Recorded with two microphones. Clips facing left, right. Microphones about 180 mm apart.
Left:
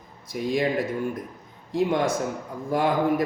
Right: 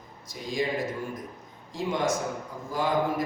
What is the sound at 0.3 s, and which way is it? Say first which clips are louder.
Speech: left 11 dB; 60° left (ahead or behind).